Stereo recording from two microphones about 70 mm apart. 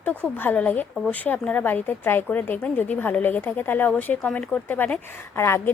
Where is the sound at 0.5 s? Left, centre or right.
Centre.